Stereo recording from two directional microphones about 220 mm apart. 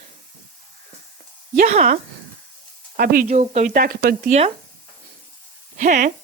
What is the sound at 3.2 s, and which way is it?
Speech, 30° right (ahead or behind).